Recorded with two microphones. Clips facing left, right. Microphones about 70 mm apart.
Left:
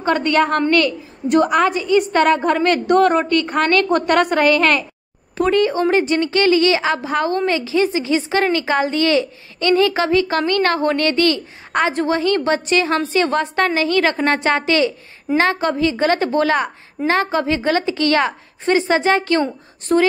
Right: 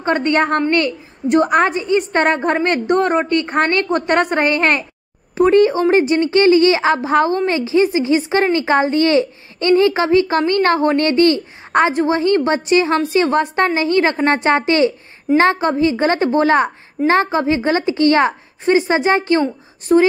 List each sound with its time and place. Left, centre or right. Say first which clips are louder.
0.0 s a woman's voice: even; right
19.9 s speech: right 3 dB; centre